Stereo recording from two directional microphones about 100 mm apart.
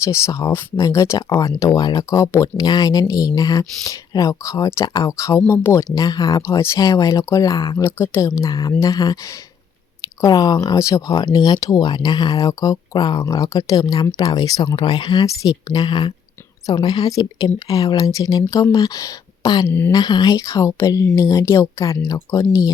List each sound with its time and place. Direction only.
0.0 s a woman's voice: 30° left (ahead or behind)
6.0 s a woman's voice: 40° left (ahead or behind); by 8.3 s 25° left (ahead or behind)
8.4 s speech: 35° left (ahead or behind)
10.2 s a woman's voice: 40° left (ahead or behind)